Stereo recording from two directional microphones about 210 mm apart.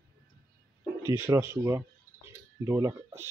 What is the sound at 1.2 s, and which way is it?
Speech, 10° right (ahead or behind).